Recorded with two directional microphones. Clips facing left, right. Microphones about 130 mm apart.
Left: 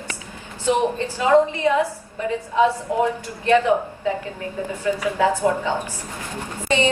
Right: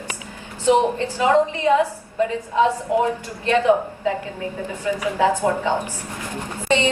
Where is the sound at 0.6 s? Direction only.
15° right (ahead or behind).